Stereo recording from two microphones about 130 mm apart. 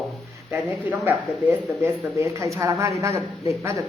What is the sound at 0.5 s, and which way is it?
Speech, 15° right (ahead or behind).